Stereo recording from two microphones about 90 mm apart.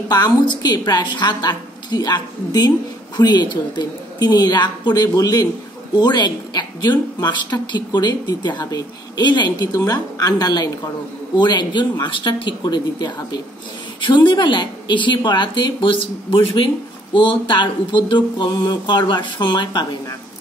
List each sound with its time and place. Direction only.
0.1 s a woman's voice: 50° left (ahead or behind)
9.8 s a woman's voice: 40° left (ahead or behind); by 19.9 s 60° left (ahead or behind)